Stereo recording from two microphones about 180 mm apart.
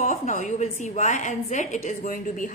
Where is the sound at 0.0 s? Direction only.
40° left (ahead or behind).